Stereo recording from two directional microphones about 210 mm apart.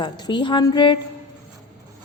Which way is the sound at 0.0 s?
20° left (ahead or behind).